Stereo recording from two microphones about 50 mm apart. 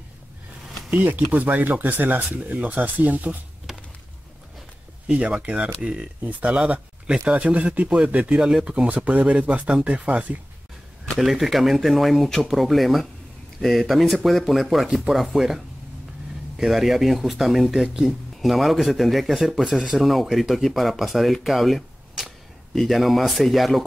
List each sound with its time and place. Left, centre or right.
0.8 s speech: right
3.7 s a sound: centre
5.0 s speech: right
7.2 s speech: right
8.4 s speech: centre
8.8 s speech: right
11.1 s speech: centre